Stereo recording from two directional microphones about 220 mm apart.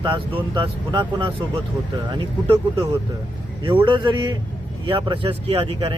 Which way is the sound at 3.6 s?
20° right (ahead or behind).